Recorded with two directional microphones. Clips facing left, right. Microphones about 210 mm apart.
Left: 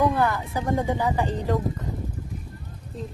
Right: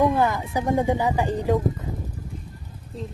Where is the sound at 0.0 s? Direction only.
15° right (ahead or behind).